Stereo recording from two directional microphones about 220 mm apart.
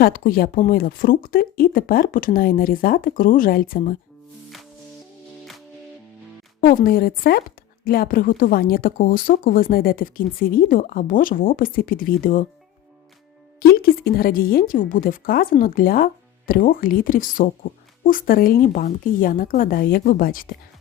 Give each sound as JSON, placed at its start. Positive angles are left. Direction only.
{"t": 0.0, "sound": "speech", "side_deg": 40}
{"t": 6.6, "sound": "speech", "side_deg": 40}
{"t": 13.6, "sound": "speech", "side_deg": 45}